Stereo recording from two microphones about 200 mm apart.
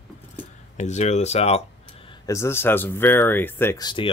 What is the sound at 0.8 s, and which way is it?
Speech, 35° left (ahead or behind).